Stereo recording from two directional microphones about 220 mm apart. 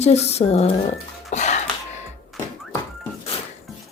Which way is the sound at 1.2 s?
30° left (ahead or behind).